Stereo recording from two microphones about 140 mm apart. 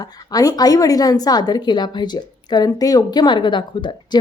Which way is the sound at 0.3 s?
25° left (ahead or behind).